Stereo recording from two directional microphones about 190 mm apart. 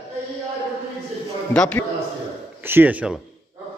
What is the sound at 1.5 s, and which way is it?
Speech, 5° left (ahead or behind).